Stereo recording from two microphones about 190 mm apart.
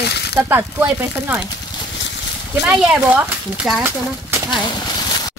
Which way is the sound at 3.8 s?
15° right (ahead or behind).